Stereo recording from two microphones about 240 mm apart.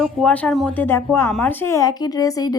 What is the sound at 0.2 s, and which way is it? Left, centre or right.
A woman's voice, centre.